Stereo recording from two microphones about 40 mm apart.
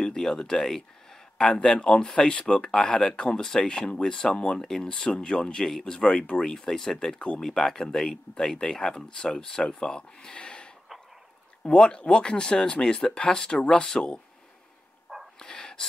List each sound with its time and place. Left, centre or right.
0.0 s speech: centre
3.6 s speech: left
4.6 s speech: centre
4.9 s speech: left
6.5 s speech: centre
15.3 s a sound: centre